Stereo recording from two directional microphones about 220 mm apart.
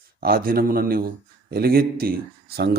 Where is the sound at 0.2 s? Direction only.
40° right (ahead or behind).